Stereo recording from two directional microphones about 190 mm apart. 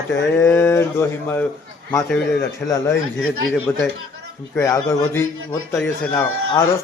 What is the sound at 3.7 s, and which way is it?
A man's voice, 10° left (ahead or behind).